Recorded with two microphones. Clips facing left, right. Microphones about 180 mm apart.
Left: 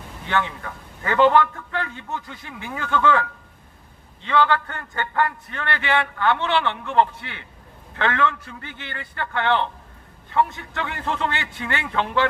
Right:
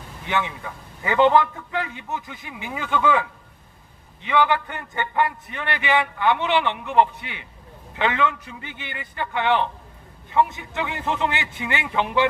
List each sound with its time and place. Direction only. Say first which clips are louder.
0.3 s a man's voice: left 1 dB; 15° right (ahead or behind)